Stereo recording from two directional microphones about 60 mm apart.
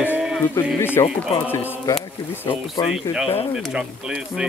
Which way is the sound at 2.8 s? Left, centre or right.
Left.